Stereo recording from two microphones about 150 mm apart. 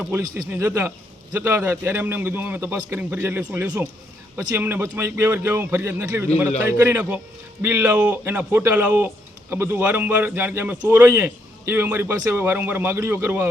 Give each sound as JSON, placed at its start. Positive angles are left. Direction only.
{"t": 0.5, "sound": "a man's voice", "side_deg": -15}